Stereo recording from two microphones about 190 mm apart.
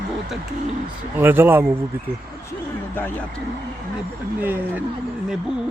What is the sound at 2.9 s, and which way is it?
Speech, 10° left (ahead or behind).